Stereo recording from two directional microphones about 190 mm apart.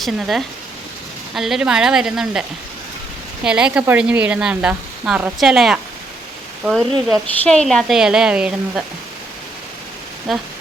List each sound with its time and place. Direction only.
0.0 s speech: centre (ahead or behind)
3.4 s speech: 5° right (ahead or behind)
10.3 s speech: centre (ahead or behind)